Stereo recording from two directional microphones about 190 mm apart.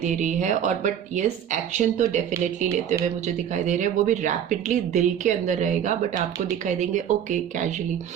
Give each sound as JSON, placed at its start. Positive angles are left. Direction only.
{"t": 0.0, "sound": "speech", "side_deg": -40}